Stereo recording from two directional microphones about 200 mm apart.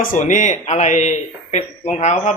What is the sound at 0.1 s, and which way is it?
Speech, 40° left (ahead or behind).